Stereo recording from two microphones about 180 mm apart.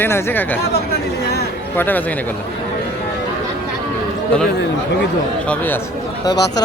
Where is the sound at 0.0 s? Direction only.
10° left (ahead or behind).